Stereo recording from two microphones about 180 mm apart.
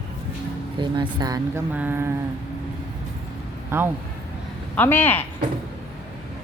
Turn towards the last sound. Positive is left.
turn(degrees=10)  # may be behind; listen again after turning